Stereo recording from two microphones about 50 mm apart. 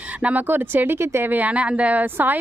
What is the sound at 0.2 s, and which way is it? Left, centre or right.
Speech, right.